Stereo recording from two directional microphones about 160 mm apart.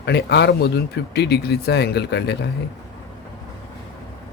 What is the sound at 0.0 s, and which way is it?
Speech, 90° left.